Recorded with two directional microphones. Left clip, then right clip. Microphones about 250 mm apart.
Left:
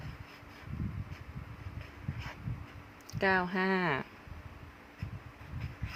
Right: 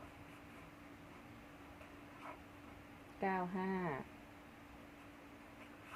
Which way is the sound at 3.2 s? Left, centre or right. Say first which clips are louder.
Left 10 dB; left.